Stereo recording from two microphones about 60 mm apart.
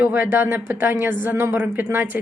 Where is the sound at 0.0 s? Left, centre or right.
Right.